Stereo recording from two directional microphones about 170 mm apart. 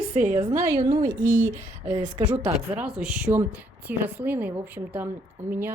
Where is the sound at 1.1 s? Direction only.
50° right (ahead or behind).